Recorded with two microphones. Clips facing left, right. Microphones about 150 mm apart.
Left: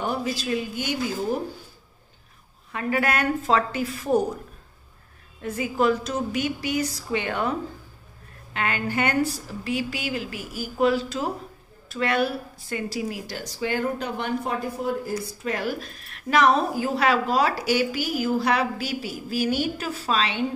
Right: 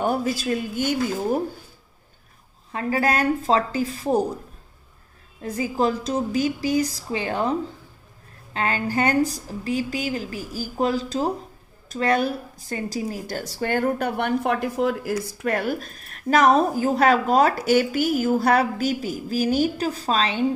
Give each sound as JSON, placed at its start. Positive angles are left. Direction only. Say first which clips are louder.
{"t": 0.0, "sound": "speech", "louder": "right 4 dB", "side_deg": -50}
{"t": 2.7, "sound": "a woman's voice", "louder": "right 2 dB", "side_deg": -30}
{"t": 5.4, "sound": "a woman's voice", "louder": "right 1 dB", "side_deg": -35}
{"t": 8.5, "sound": "a woman's voice", "louder": "right 2 dB", "side_deg": -35}
{"t": 13.4, "sound": "speech", "louder": "right 3 dB", "side_deg": -55}